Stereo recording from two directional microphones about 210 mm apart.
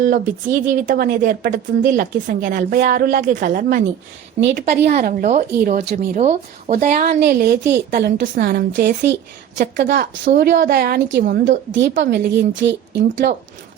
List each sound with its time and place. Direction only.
0.7 s a woman's voice: 45° right (ahead or behind)
11.7 s a woman's voice: 55° right (ahead or behind)